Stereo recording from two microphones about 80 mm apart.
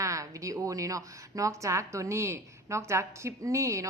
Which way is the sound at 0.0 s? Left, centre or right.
Right.